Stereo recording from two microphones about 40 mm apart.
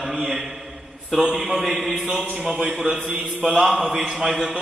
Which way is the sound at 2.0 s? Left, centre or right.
Right.